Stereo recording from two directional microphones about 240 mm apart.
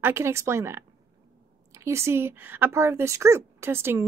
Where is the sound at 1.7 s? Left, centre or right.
Centre.